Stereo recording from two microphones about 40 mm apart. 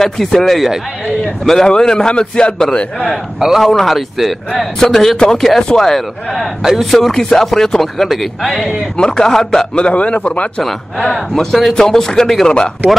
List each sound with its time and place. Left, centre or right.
0.0 s a man's voice: centre
3.3 s speech: centre
3.6 s speech: centre
6.6 s speech: centre
6.9 s speech: centre
8.9 s speech: left
9.8 s a man's voice: left
10.6 s a man's voice: centre